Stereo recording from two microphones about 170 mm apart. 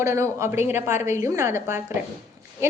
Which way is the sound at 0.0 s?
15° right (ahead or behind).